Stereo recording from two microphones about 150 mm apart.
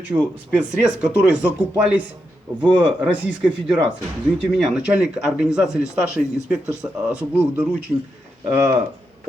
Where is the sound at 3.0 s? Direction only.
5° right (ahead or behind).